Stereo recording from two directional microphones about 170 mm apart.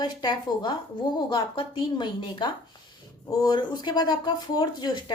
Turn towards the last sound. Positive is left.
turn(degrees=25)  # may be behind; listen again after turning